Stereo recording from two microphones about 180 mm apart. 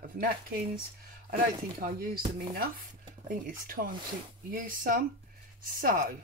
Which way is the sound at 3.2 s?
55° right (ahead or behind).